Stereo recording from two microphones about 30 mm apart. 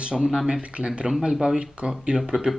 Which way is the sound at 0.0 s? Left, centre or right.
Right.